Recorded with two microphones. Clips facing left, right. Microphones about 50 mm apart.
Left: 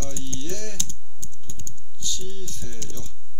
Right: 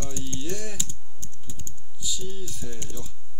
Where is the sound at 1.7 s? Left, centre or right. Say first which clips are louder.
Left 1 dB; right.